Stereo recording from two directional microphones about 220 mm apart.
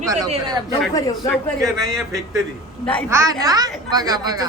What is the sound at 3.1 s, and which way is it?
A woman's voice, 15° right (ahead or behind).